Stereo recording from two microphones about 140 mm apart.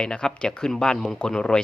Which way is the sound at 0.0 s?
5° left (ahead or behind).